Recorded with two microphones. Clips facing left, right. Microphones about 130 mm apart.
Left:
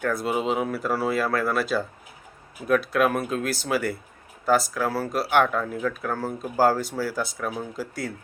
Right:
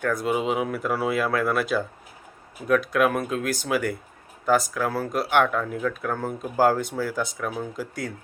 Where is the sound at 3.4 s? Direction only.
15° right (ahead or behind).